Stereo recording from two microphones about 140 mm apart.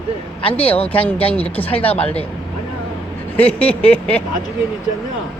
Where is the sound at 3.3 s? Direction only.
10° left (ahead or behind).